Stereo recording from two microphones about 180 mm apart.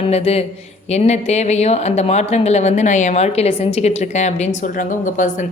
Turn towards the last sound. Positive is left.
turn(degrees=45)  # may be behind; listen again after turning